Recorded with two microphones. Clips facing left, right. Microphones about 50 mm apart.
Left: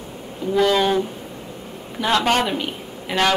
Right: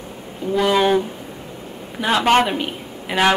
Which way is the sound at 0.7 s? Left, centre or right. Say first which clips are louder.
Right 2 dB; centre.